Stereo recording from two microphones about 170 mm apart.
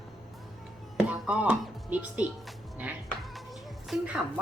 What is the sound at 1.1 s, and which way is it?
Speech, 5° right (ahead or behind).